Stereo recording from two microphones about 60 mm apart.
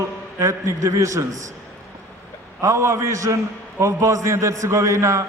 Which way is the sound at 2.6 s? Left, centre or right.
Right.